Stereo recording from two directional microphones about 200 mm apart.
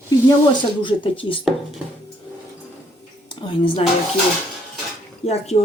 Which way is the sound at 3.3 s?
25° left (ahead or behind).